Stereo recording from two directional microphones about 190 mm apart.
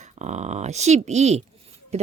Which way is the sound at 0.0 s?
40° right (ahead or behind).